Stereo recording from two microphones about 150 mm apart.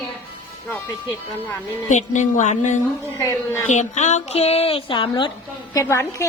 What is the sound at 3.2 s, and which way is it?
Speech, 20° left (ahead or behind).